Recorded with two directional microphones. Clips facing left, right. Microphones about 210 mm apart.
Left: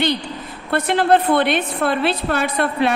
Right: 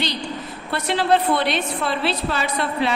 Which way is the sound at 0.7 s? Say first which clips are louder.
Left 4 dB; 55° left (ahead or behind).